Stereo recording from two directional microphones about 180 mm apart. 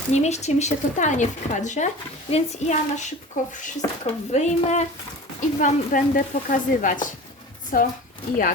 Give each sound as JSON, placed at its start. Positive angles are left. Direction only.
{"t": 0.1, "sound": "speech", "side_deg": 40}